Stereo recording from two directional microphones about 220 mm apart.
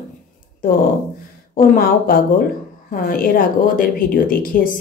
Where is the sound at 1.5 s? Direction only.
40° left (ahead or behind).